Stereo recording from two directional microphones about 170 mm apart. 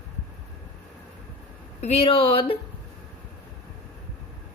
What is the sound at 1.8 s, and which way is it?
Speech, 35° left (ahead or behind).